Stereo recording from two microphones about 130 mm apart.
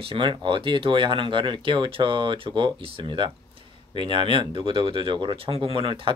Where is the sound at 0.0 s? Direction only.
40° right (ahead or behind).